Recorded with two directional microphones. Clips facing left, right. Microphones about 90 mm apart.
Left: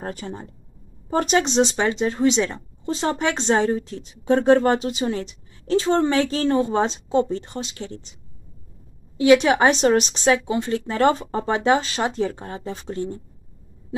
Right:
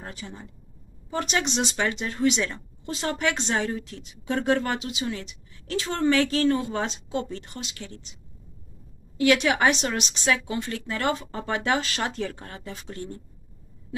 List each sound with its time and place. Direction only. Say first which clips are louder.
0.0 s speech: left 8 dB; 45° left (ahead or behind)
9.1 s speech: left 6 dB; 20° left (ahead or behind)